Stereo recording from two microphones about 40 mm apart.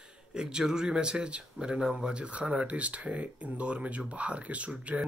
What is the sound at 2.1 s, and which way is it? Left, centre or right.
Speech, right.